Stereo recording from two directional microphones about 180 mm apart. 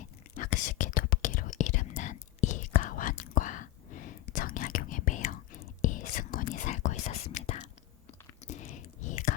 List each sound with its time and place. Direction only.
0.3 s whispering: 45° left (ahead or behind)